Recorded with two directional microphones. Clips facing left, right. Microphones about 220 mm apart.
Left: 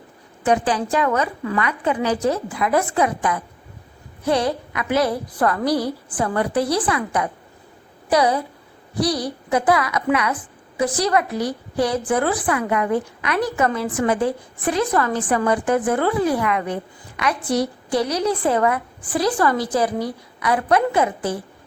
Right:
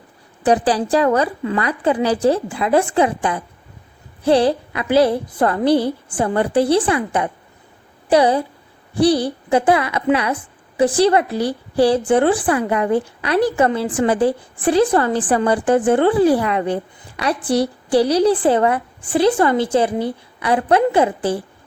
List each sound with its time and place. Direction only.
0.4 s a woman's voice: 35° right (ahead or behind)